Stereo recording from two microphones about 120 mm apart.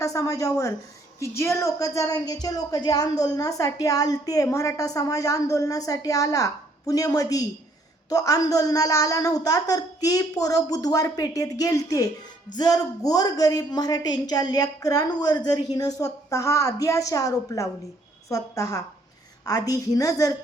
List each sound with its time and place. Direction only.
0.0 s a woman's voice: 30° left (ahead or behind)